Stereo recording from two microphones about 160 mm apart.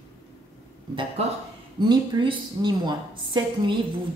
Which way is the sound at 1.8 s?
30° right (ahead or behind).